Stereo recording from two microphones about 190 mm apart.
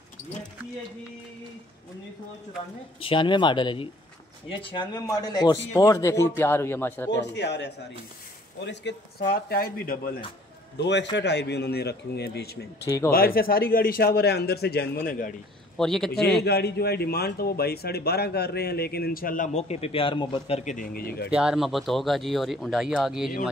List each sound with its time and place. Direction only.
3.0 s a man's voice: 25° left (ahead or behind); by 7.1 s 10° left (ahead or behind)
7.1 s a man's voice: 65° left (ahead or behind)
9.3 s speech: 55° left (ahead or behind)
10.8 s a man's voice: 65° left (ahead or behind)
12.8 s a man's voice: 15° left (ahead or behind)
13.1 s speech: 50° left (ahead or behind)
15.8 s speech: centre (ahead or behind)
16.1 s a man's voice: 55° left (ahead or behind)
21.3 s speech: 5° right (ahead or behind)